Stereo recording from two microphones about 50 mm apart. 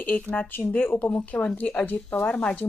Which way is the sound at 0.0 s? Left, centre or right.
Left.